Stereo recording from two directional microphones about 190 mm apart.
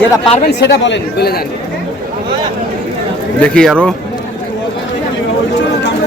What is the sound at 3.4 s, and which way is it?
Speech, 5° left (ahead or behind).